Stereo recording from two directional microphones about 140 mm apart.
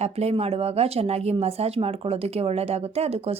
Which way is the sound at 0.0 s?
50° right (ahead or behind).